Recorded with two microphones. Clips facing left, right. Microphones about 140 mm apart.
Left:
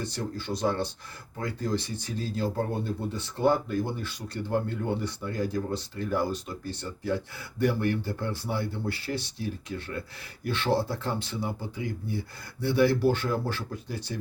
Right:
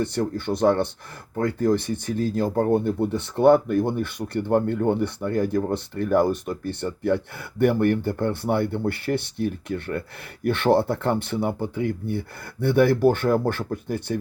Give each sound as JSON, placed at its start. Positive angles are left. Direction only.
{"t": 0.0, "sound": "speech", "side_deg": -55}